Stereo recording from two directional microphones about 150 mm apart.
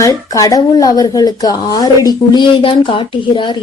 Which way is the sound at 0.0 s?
25° left (ahead or behind).